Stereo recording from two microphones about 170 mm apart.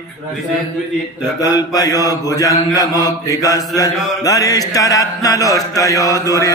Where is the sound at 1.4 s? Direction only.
20° left (ahead or behind).